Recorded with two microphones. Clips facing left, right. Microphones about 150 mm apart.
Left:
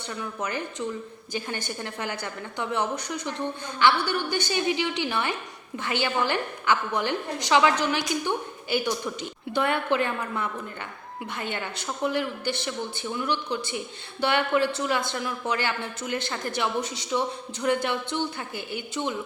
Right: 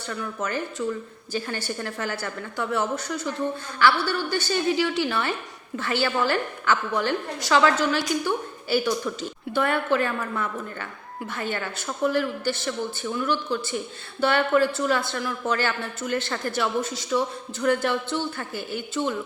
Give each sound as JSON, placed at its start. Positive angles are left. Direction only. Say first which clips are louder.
{"t": 0.1, "sound": "a woman's voice", "louder": "right 2 dB", "side_deg": 15}